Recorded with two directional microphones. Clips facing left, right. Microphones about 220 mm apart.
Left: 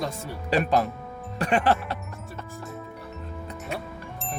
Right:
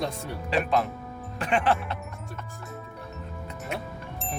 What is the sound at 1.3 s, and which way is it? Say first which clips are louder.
Speech: left 2 dB; 40° left (ahead or behind).